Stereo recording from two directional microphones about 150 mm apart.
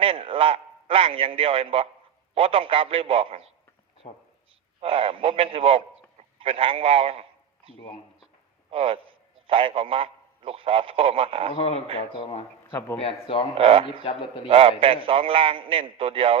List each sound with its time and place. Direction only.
0.0 s a man's voice: 40° right (ahead or behind)
4.8 s a man's voice: 40° right (ahead or behind)
11.5 s speech: 45° left (ahead or behind)
11.9 s speech: 35° left (ahead or behind)
13.6 s a man's voice: 40° right (ahead or behind)
13.8 s speech: 35° left (ahead or behind)
14.4 s a man's voice: 40° right (ahead or behind)